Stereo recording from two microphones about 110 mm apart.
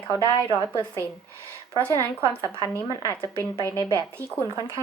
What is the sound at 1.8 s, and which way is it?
A woman's voice, 30° right (ahead or behind).